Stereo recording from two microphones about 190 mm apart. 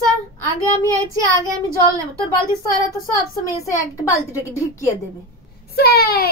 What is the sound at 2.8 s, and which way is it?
A woman's voice, 20° left (ahead or behind).